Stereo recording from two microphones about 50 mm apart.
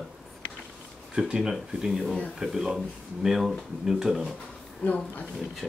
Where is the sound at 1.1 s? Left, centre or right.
Centre.